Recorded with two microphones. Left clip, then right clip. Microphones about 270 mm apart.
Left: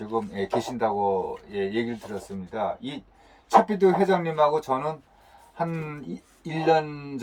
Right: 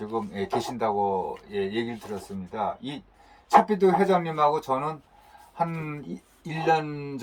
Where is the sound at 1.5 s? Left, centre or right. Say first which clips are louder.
Left 1 dB; centre.